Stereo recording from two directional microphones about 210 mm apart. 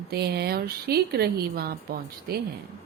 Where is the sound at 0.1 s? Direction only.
50° right (ahead or behind).